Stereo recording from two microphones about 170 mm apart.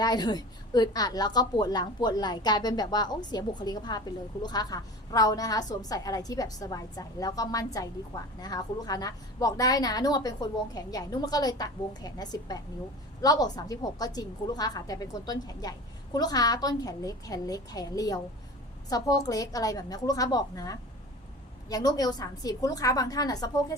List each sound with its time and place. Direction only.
0.0 s a woman's voice: 25° left (ahead or behind)